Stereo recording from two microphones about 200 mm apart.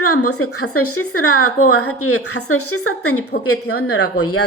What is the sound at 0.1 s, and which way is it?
A woman's voice, 90° left.